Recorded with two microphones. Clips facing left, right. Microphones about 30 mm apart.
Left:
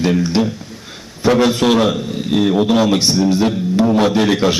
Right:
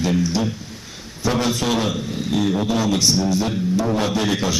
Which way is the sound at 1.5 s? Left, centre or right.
Left.